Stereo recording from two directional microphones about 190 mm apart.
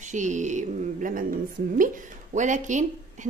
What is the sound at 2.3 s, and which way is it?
Speech, 40° right (ahead or behind).